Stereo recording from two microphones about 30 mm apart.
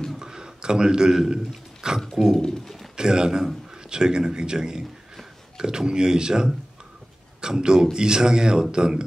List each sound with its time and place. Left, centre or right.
0.2 s a sound: right
1.3 s a man's voice: right
2.3 s speech: centre
3.0 s a man's voice: right